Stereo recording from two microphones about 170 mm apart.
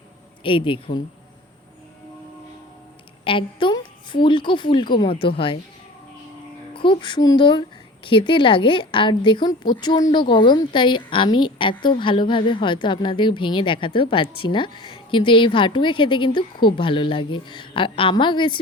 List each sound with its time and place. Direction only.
0.4 s speech: 30° left (ahead or behind)
3.2 s speech: 30° left (ahead or behind)
6.7 s speech: 30° left (ahead or behind)